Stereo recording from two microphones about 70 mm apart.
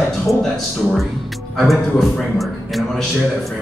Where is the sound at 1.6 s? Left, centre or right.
Centre.